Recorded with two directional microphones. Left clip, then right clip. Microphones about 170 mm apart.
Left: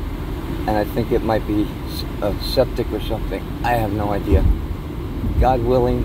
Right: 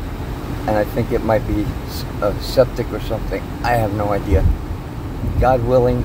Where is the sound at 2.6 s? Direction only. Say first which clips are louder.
Right 3 dB; 10° right (ahead or behind).